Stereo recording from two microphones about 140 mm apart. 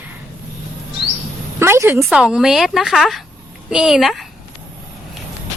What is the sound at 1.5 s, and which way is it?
Speech, 20° right (ahead or behind).